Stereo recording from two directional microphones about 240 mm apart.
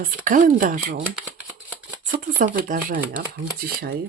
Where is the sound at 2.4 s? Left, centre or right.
Right.